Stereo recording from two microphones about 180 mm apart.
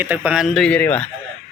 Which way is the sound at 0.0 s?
10° right (ahead or behind).